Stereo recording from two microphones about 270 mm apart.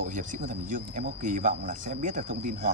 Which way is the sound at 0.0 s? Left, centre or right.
Right.